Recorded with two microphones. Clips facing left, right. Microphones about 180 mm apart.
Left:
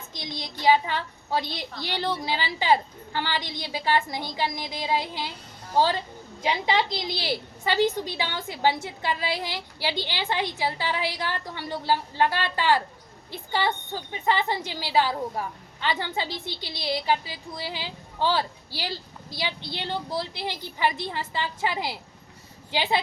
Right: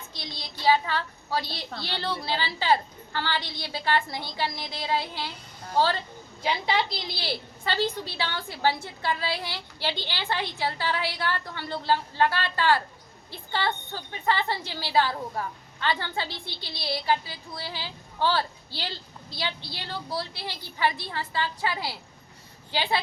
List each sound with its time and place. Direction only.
0.1 s a woman's voice: 15° left (ahead or behind)